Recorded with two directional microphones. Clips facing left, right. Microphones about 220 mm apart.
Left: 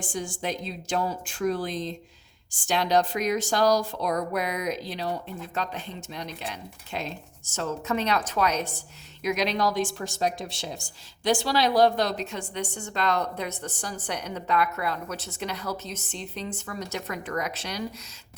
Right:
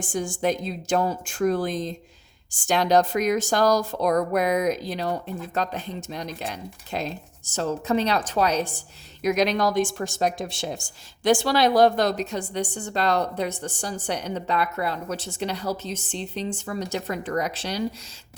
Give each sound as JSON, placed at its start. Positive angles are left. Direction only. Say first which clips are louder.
{"t": 0.0, "sound": "a woman's voice", "louder": "right 6 dB", "side_deg": -45}
{"t": 9.2, "sound": "a woman's voice", "louder": "right 4 dB", "side_deg": -45}